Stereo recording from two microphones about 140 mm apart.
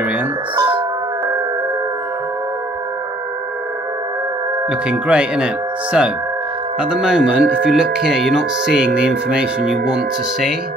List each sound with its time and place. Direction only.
0.6 s music: 35° right (ahead or behind)
4.6 s speech: 5° right (ahead or behind)